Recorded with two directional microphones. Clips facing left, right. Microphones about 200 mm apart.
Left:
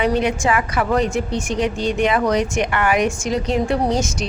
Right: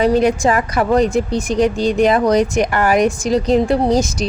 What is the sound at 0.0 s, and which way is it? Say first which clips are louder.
A woman's voice: right 5 dB; 40° right (ahead or behind).